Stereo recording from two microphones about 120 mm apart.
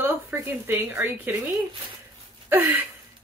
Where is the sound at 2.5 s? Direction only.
15° right (ahead or behind).